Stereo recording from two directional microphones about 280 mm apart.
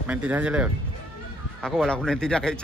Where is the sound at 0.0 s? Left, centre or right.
Centre.